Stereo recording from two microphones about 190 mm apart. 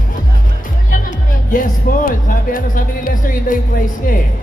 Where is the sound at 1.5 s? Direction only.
45° left (ahead or behind).